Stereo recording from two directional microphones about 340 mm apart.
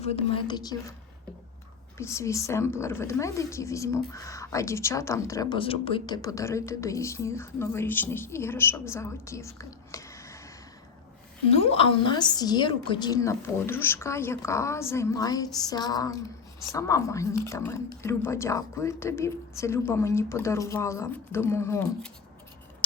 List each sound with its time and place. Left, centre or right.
0.0 s a woman's voice: centre
2.0 s a woman's voice: centre
11.7 s a woman's voice: centre